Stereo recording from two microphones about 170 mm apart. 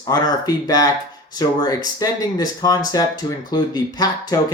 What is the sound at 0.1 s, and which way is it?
Speech, 20° left (ahead or behind).